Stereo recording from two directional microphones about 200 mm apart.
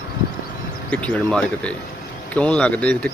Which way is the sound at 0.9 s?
5° left (ahead or behind).